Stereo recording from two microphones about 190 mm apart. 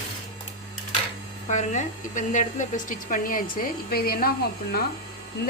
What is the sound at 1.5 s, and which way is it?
Speech, 40° left (ahead or behind).